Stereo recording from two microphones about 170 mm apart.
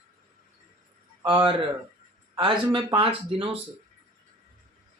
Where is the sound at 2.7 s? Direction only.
30° right (ahead or behind).